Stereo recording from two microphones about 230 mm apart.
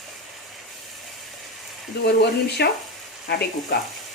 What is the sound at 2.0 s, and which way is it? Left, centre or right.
Speech, left.